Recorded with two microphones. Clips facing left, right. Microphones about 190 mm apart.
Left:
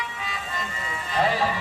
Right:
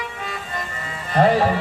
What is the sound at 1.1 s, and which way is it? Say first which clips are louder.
Electric shaver: right 7 dB; 55° right (ahead or behind).